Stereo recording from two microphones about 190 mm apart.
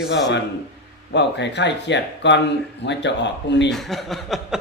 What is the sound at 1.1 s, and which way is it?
Speech, 65° left (ahead or behind).